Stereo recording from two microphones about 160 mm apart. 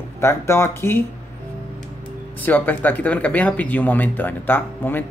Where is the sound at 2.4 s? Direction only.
10° left (ahead or behind).